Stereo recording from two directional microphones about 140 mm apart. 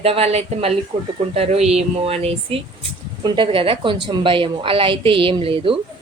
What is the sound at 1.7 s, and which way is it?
A woman's voice, 45° right (ahead or behind).